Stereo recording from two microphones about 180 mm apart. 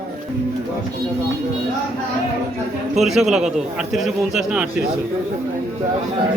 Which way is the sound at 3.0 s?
Centre (ahead or behind).